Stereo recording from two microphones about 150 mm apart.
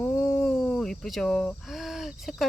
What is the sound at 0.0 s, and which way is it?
Speech, 5° left (ahead or behind).